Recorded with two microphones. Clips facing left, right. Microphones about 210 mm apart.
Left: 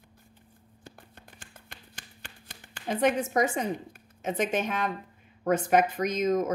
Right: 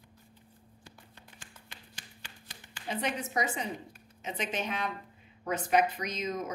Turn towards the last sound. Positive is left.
turn(degrees=50)  # may be behind; listen again after turning